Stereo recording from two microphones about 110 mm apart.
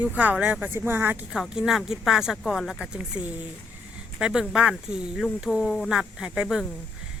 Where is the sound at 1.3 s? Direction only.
5° right (ahead or behind).